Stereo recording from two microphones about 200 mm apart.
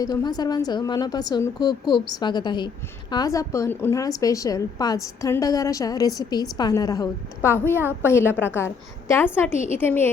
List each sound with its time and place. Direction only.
0.0 s a woman's voice: 20° left (ahead or behind)